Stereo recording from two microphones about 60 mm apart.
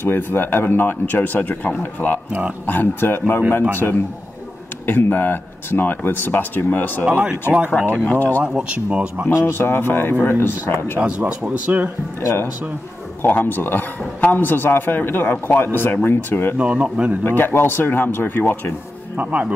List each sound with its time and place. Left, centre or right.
0.0 s speech: left
4.8 s speech: left
8.5 s speech: right
9.5 s speech: left
11.0 s speech: centre
12.2 s speech: left
13.2 s speech: left
16.5 s speech: right
17.2 s speech: left
19.1 s speech: right